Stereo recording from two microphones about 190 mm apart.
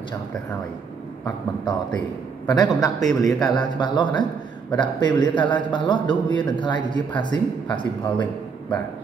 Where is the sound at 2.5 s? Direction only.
20° left (ahead or behind).